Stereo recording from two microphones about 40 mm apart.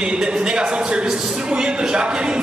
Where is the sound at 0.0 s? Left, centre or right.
Right.